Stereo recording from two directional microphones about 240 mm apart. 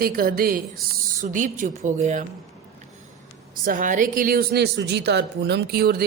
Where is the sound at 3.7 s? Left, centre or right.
Right.